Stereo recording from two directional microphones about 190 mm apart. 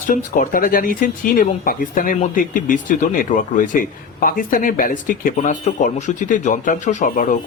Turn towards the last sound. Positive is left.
turn(degrees=40)  # may be behind; listen again after turning